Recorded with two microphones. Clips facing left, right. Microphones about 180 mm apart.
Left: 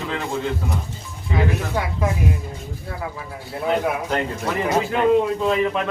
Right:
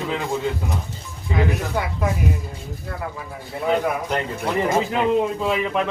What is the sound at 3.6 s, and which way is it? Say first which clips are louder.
A man's voice: even; centre (ahead or behind).